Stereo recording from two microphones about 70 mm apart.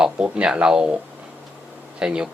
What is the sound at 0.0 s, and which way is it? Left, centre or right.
Speech, centre.